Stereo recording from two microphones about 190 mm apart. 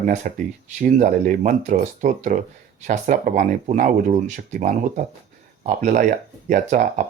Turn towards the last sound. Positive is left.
turn(degrees=-40)  # may be behind; listen again after turning